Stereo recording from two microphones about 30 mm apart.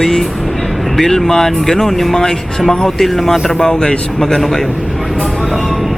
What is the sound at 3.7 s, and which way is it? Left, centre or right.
Speech, left.